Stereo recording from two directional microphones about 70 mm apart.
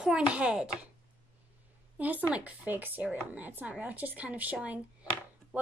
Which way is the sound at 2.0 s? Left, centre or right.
Right.